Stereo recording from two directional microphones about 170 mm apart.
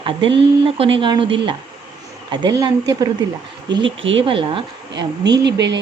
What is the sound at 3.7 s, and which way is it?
Speech, 90° right.